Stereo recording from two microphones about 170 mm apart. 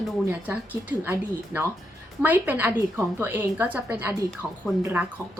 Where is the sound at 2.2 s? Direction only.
10° right (ahead or behind).